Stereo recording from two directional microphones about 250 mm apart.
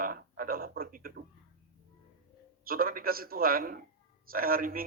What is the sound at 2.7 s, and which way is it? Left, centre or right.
A man's voice, right.